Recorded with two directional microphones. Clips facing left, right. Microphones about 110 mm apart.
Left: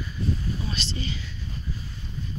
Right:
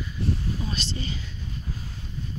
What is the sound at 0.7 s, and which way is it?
Speech, 40° right (ahead or behind).